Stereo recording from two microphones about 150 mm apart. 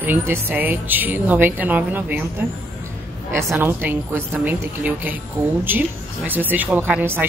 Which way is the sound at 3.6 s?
15° right (ahead or behind).